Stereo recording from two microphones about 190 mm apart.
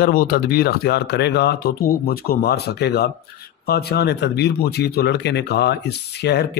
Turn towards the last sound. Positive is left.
turn(degrees=60)  # may be behind; listen again after turning